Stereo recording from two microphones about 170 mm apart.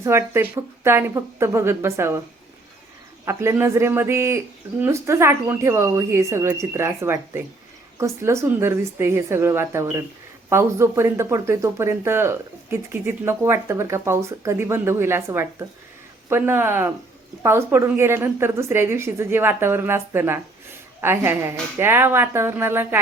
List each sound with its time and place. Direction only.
0.0 s speech: 15° right (ahead or behind)
3.2 s speech: 15° right (ahead or behind)